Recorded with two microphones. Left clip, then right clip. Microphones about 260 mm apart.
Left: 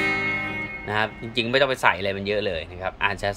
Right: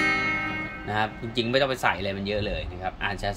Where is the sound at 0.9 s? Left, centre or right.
Centre.